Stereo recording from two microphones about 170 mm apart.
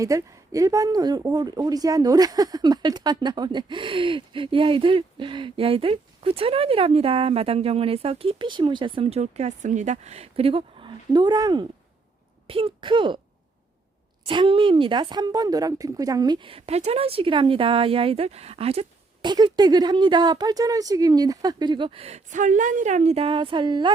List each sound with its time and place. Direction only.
0.0 s speech: 20° right (ahead or behind)
14.3 s speech: 30° right (ahead or behind)